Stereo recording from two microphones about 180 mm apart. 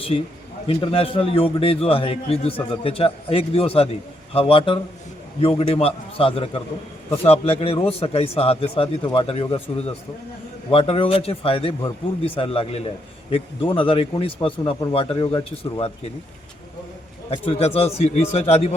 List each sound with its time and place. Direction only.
0.7 s a man's voice: 30° left (ahead or behind)
17.2 s a man's voice: 30° left (ahead or behind)